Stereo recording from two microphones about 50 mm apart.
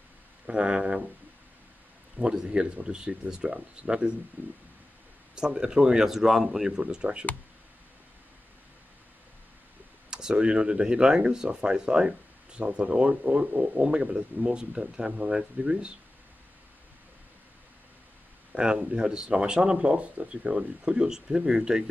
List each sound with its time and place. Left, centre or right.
0.5 s speech: right
2.1 s speech: centre
5.3 s speech: centre
6.9 s speech: right
10.0 s speech: centre
13.8 s speech: centre
18.5 s speech: centre